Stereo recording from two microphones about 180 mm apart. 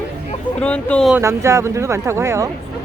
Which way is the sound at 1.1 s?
15° right (ahead or behind).